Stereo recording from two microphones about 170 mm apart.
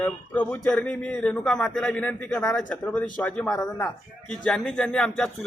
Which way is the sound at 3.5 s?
20° left (ahead or behind).